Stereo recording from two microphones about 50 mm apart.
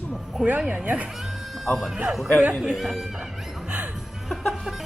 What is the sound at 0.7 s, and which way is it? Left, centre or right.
Speech, right.